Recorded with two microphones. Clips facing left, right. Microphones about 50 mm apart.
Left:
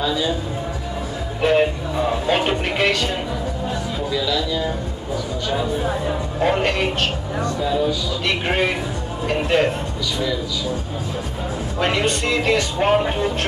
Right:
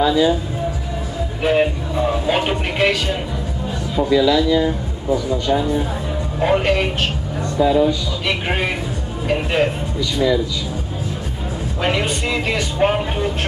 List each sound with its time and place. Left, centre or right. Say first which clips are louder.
0.0 s speech: right 6 dB; centre
1.4 s speech: even; centre
4.1 s speech: right 8 dB; centre
4.6 s speech: right 5 dB; centre
7.6 s speech: right 7 dB; right
8.3 s a man's voice: left 1 dB; centre
11.8 s speech: even; centre